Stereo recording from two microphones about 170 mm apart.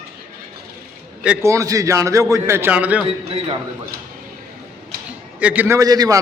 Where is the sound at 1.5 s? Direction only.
20° right (ahead or behind).